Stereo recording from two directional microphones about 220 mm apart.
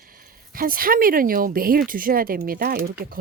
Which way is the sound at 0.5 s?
40° right (ahead or behind).